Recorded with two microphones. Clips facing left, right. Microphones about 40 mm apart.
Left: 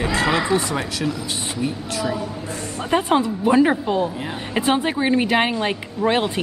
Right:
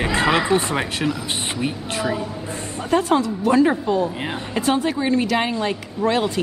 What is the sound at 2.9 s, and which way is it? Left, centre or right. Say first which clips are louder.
Speech: even; left.